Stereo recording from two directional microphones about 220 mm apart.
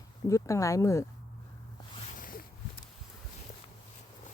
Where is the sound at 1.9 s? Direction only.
35° left (ahead or behind).